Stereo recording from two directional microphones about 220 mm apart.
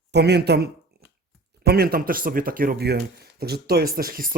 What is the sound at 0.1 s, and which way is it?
Speech, 50° right (ahead or behind).